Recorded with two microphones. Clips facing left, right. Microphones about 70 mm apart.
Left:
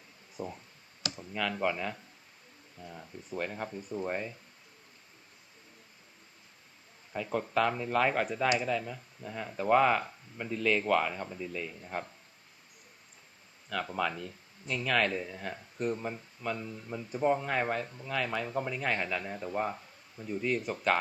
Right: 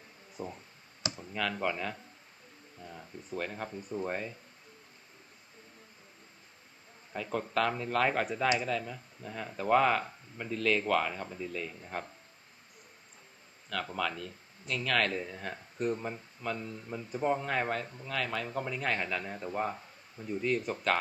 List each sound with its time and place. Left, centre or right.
0.3 s speech: centre
1.0 s clicking: right
1.3 s speech: centre
7.1 s speech: centre
13.7 s speech: centre